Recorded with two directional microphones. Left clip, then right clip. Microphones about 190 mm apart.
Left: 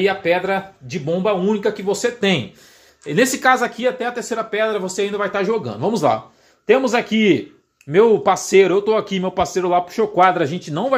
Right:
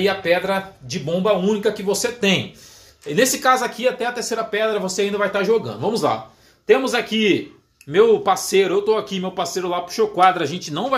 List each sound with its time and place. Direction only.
0.0 s speech: 45° left (ahead or behind)